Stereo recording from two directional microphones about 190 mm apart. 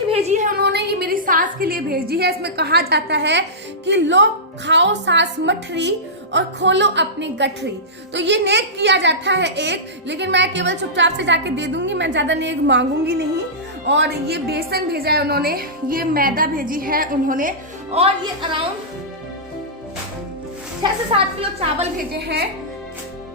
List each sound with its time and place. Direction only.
0.1 s a sound: 35° right (ahead or behind); by 3.4 s 65° right (ahead or behind)
3.8 s a woman's voice: 70° right (ahead or behind); by 17.5 s 45° right (ahead or behind)
17.9 s speech: 35° right (ahead or behind)
21.1 s speech: 30° right (ahead or behind)
21.9 s a woman's voice: 55° right (ahead or behind)